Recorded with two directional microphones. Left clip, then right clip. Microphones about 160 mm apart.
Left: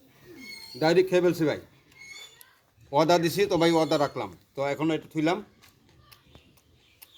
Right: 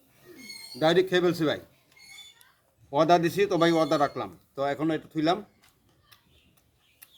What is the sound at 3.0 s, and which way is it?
A man's voice, 10° right (ahead or behind).